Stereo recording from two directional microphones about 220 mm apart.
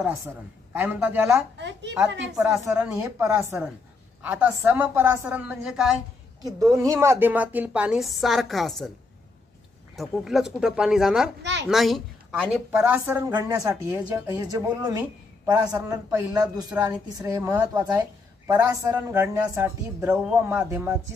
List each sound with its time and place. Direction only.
0.7 s a woman's voice: 10° right (ahead or behind)
1.6 s a woman's voice: 50° right (ahead or behind)
2.3 s a woman's voice: 5° right (ahead or behind)
6.4 s a woman's voice: 15° right (ahead or behind); by 8.9 s centre (ahead or behind)
9.9 s a woman's voice: centre (ahead or behind)